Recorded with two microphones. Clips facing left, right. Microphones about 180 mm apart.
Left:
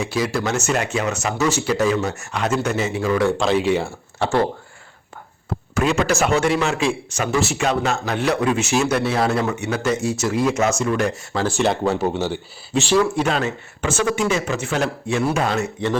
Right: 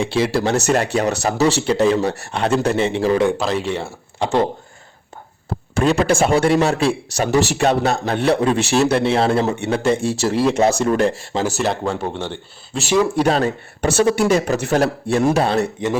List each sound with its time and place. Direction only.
0.0 s a man's voice: 30° right (ahead or behind)
3.3 s speech: centre (ahead or behind)
4.2 s speech: 20° right (ahead or behind)
5.7 s a man's voice: 35° right (ahead or behind)
11.4 s speech: centre (ahead or behind)
13.1 s a man's voice: 35° right (ahead or behind)